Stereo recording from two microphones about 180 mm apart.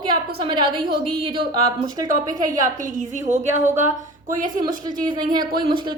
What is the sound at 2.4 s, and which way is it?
A woman's voice, 50° right (ahead or behind).